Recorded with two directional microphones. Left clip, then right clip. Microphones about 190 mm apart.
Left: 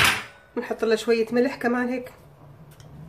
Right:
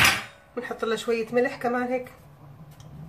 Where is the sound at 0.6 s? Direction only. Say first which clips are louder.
Left 5 dB; 50° left (ahead or behind).